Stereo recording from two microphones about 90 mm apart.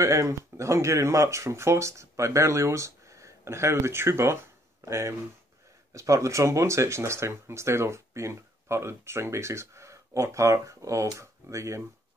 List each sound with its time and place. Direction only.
0.0 s speech: 35° right (ahead or behind)